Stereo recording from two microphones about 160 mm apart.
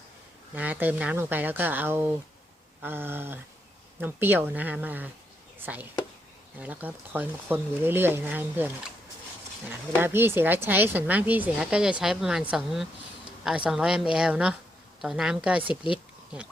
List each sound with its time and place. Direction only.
0.5 s speech: 10° right (ahead or behind)
10.0 s speech: 15° right (ahead or behind)
15.7 s speech: 30° left (ahead or behind)